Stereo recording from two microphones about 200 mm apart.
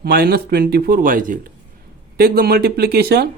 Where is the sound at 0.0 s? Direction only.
50° right (ahead or behind).